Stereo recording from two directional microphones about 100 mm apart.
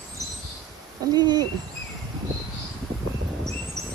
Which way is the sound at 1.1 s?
45° right (ahead or behind).